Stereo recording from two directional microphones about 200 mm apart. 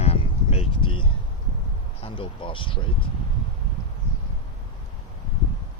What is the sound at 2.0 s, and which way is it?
Speech, 25° left (ahead or behind).